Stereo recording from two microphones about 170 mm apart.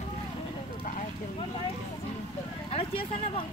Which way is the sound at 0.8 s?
45° left (ahead or behind).